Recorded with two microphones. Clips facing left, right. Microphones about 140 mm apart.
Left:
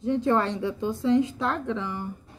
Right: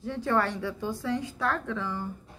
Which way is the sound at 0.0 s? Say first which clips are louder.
Left 4 dB; 20° left (ahead or behind).